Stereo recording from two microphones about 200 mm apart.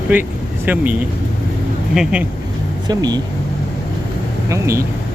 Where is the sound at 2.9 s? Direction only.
20° right (ahead or behind).